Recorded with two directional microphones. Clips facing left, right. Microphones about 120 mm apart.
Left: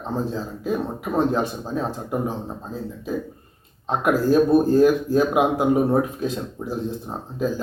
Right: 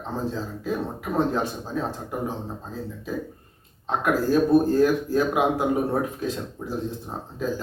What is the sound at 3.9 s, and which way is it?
Speech, 20° left (ahead or behind).